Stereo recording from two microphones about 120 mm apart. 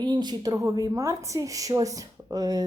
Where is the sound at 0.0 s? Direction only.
35° right (ahead or behind).